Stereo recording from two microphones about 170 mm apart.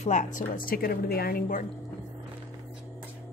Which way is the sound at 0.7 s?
60° left (ahead or behind).